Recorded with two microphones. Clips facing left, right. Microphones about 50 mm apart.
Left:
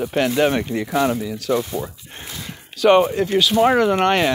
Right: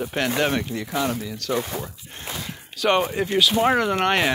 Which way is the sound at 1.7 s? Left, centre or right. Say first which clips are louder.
Left 5 dB; right.